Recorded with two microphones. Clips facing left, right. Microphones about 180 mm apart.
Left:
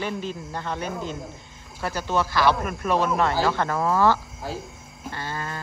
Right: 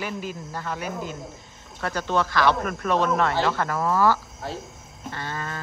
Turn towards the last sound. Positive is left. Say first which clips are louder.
# even
turn(degrees=5)  # may be behind; listen again after turning